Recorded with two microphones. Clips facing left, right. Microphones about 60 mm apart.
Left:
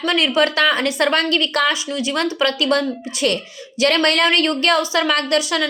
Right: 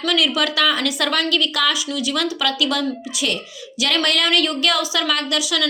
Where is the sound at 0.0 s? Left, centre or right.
Left.